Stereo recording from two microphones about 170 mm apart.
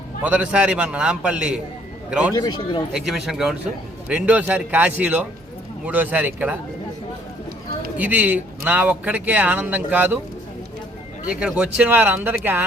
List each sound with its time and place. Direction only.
0.2 s a man's voice: 10° right (ahead or behind)
2.3 s speech: 25° left (ahead or behind)
2.9 s speech: centre (ahead or behind)
7.9 s speech: 10° right (ahead or behind)
11.3 s speech: 5° right (ahead or behind)